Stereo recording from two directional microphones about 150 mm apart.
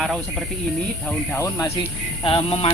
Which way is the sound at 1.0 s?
15° left (ahead or behind).